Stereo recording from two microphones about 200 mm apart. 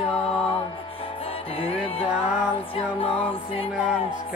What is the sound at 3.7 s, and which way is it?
Mantra, 5° right (ahead or behind).